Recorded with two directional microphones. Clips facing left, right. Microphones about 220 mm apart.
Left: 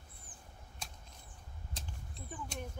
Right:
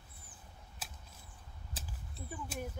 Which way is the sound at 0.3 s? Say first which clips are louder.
Left 2 dB; 50° left (ahead or behind).